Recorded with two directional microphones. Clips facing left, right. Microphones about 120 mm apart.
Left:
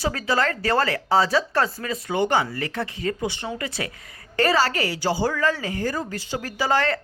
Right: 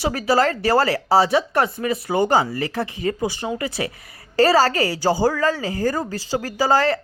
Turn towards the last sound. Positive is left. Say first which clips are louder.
# right 4 dB
turn(degrees=-30)  # may be behind; listen again after turning